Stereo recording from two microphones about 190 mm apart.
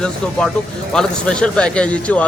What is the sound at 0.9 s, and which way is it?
Speech, 5° left (ahead or behind).